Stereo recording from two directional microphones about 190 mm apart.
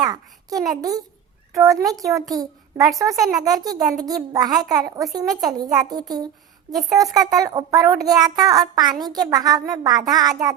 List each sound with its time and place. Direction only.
0.0 s a child's voice: 20° right (ahead or behind)